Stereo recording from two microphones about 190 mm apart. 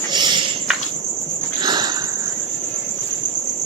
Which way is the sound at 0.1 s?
25° right (ahead or behind).